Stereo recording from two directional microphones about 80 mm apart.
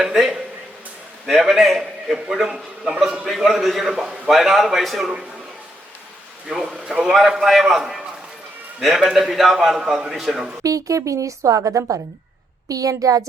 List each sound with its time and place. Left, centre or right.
0.0 s speech: centre
1.3 s a man's voice: centre
3.0 s a man's voice: centre
6.5 s a man's voice: centre
10.6 s a woman's voice: right